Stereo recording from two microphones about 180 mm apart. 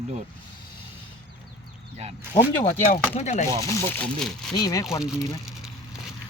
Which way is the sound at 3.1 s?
40° left (ahead or behind).